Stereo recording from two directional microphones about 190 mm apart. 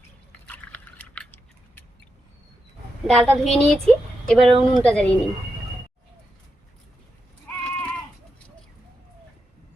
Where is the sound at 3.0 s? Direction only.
5° left (ahead or behind).